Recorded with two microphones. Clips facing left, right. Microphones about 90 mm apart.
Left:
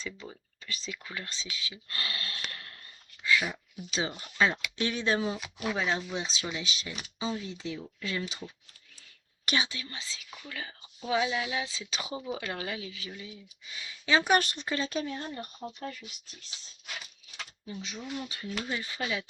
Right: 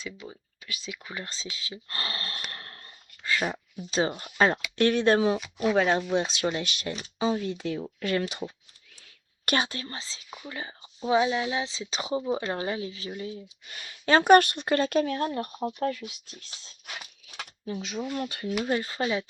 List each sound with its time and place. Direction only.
0.0 s speech: 10° right (ahead or behind)
1.2 s speech: 30° right (ahead or behind)
2.5 s a sound: 40° right (ahead or behind)
4.1 s speech: 45° right (ahead or behind)
9.5 s speech: 50° right (ahead or behind)
13.7 s speech: 55° right (ahead or behind)
18.6 s speech: 45° right (ahead or behind)